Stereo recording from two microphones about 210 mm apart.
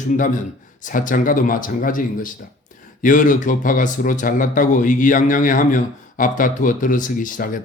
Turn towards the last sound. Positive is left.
turn(degrees=40)  # may be behind; listen again after turning